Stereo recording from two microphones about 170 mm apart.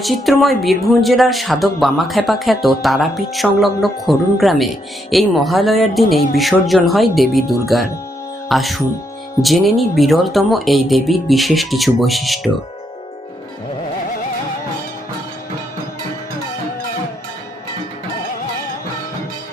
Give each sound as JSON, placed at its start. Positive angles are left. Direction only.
{"t": 0.0, "sound": "speech", "side_deg": 0}